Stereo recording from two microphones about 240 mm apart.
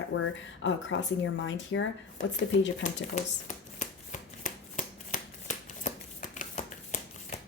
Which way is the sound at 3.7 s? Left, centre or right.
Left.